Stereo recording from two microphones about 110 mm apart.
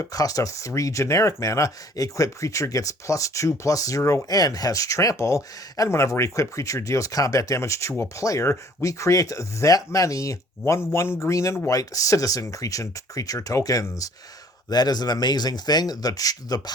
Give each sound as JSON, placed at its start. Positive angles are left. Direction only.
{"t": 0.0, "sound": "speech", "side_deg": 30}